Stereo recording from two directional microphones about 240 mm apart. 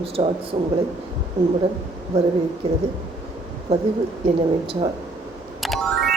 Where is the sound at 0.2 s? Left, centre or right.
Right.